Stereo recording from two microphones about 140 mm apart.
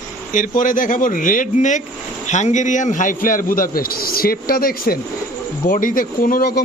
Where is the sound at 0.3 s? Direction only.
70° left (ahead or behind); by 4.9 s 90° left.